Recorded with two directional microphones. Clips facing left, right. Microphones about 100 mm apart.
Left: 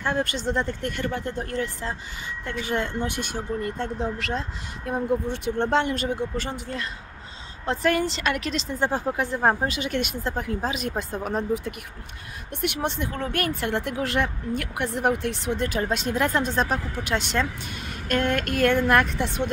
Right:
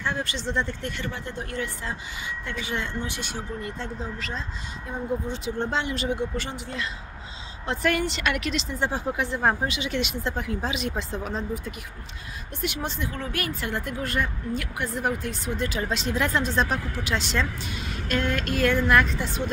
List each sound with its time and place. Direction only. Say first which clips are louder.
0.0 s speech: left 4 dB; 50° left (ahead or behind)
9.4 s speech: left 2 dB; 30° left (ahead or behind)
9.7 s speech: left 1 dB; 50° left (ahead or behind)
12.6 s speech: left 3 dB; 60° left (ahead or behind)